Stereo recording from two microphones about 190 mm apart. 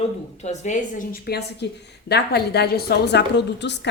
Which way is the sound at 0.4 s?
40° left (ahead or behind).